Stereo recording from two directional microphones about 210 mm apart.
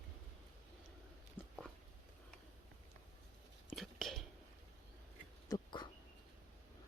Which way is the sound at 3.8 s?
Centre (ahead or behind).